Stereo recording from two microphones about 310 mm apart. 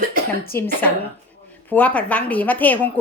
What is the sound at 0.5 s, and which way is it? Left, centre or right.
Speech, left.